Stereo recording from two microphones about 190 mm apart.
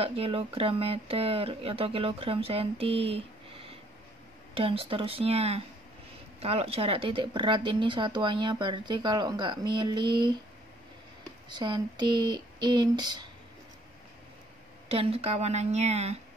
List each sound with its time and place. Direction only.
0.0 s speech: 30° right (ahead or behind)
11.4 s speech: 25° right (ahead or behind)
14.9 s a woman's voice: 30° right (ahead or behind)